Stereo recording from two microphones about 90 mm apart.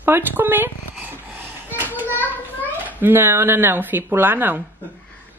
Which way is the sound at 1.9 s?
20° right (ahead or behind).